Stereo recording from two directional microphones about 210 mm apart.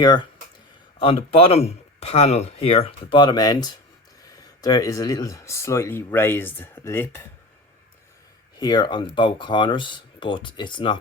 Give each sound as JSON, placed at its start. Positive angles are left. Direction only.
{"t": 0.0, "sound": "speech", "side_deg": 20}
{"t": 8.5, "sound": "speech", "side_deg": 20}